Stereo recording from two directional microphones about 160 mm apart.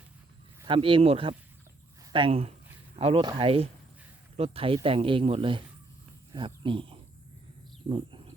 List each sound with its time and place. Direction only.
0.7 s a man's voice: 35° right (ahead or behind)
2.1 s a sound: 35° right (ahead or behind)
3.2 s a man's voice: 35° right (ahead or behind)